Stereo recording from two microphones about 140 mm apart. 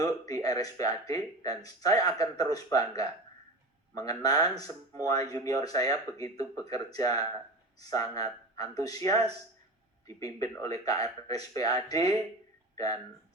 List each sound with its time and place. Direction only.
0.0 s speech: 25° left (ahead or behind)